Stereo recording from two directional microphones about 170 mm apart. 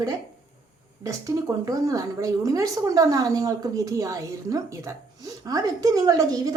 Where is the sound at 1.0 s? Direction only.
20° right (ahead or behind).